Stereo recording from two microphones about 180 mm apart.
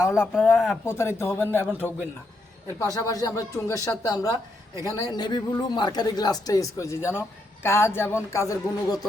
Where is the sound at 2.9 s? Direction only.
20° left (ahead or behind).